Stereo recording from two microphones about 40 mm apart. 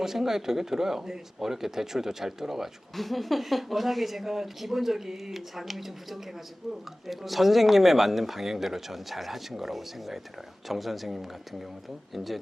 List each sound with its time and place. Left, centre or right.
0.0 s speech: centre
2.9 s speech: centre